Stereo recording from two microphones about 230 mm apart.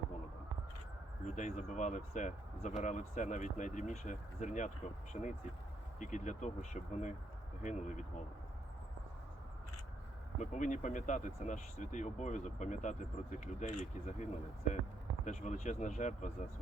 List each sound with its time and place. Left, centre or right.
1.4 s speech: left
10.3 s speech: left